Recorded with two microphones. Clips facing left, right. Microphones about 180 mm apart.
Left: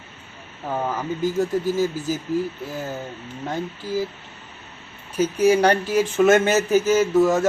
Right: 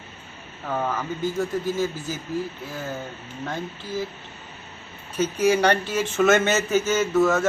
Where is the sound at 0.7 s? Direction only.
15° left (ahead or behind).